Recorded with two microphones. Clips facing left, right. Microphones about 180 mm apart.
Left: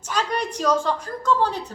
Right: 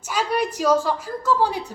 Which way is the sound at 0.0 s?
10° right (ahead or behind).